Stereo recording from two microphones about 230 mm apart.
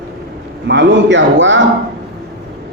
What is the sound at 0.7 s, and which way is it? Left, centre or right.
Speech, right.